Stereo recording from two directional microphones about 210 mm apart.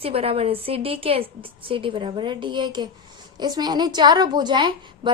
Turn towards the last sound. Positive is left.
turn(degrees=-20)  # may be behind; listen again after turning